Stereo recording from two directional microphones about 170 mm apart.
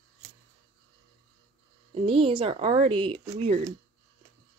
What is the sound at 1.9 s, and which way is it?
Speech, 30° right (ahead or behind).